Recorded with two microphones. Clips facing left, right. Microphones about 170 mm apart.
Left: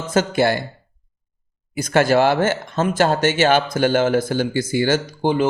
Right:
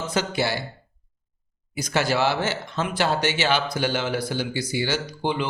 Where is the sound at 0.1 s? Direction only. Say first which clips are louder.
Left 9 dB; 50° left (ahead or behind).